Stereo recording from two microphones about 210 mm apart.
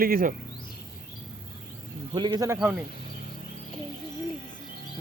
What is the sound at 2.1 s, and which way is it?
Speech, 20° right (ahead or behind).